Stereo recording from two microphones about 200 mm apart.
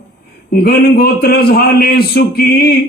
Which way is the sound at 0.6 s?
50° left (ahead or behind).